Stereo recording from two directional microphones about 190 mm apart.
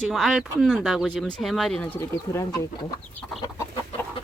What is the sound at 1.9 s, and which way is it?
Speech, 15° left (ahead or behind).